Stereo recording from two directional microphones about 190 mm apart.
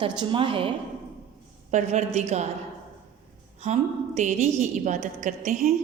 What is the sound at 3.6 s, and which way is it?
A woman's voice, 35° right (ahead or behind).